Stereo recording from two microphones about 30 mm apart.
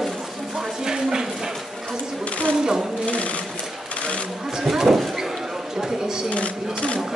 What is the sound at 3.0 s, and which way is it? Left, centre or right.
Speech, left.